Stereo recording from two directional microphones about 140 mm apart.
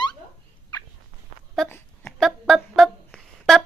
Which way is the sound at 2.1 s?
Centre (ahead or behind).